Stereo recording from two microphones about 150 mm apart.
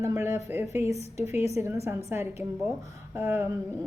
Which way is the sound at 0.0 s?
20° right (ahead or behind).